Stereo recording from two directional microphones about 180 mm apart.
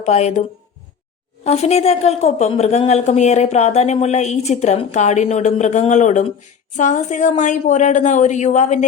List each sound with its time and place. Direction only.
0.0 s a woman's voice: 40° left (ahead or behind)
1.5 s a woman's voice: 35° left (ahead or behind)